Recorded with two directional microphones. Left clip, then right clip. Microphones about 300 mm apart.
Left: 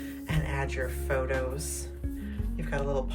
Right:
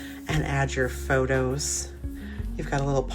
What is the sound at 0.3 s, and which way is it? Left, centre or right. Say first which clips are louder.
Music: right 7 dB; centre.